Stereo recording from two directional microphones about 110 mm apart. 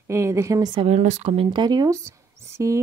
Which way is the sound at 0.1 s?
25° right (ahead or behind).